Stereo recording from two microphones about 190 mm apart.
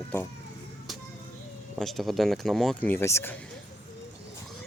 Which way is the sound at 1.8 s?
Centre (ahead or behind).